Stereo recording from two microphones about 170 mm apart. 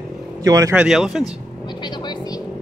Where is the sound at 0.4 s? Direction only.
20° right (ahead or behind).